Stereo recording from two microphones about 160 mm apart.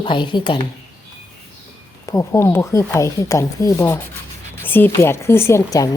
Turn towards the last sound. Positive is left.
turn(degrees=20)  # may be behind; listen again after turning